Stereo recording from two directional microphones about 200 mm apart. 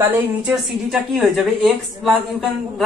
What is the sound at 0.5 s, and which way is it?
A woman's voice, centre (ahead or behind).